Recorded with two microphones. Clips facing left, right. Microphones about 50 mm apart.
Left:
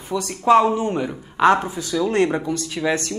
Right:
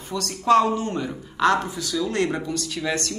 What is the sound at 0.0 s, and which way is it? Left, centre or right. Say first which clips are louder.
Speech: left 5 dB; centre.